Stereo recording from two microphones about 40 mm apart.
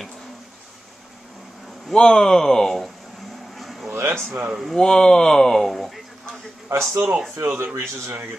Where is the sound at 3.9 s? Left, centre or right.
Right.